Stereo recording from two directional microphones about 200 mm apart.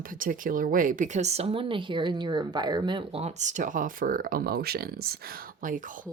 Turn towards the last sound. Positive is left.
turn(degrees=-40)  # may be behind; listen again after turning